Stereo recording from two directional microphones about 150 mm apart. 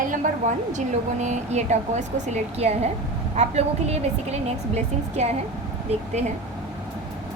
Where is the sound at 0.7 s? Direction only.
55° right (ahead or behind).